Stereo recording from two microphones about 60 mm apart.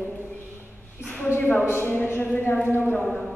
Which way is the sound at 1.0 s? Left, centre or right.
Left.